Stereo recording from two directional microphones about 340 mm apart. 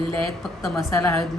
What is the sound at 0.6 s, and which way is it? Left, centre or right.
Speech, centre.